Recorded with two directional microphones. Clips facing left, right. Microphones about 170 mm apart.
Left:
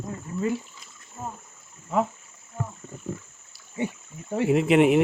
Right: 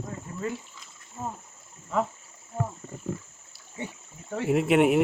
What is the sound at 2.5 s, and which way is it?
Wild animals, 35° right (ahead or behind).